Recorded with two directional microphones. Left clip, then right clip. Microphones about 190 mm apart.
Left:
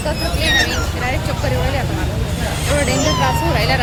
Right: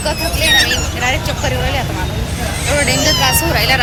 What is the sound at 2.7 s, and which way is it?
Speech, 5° left (ahead or behind).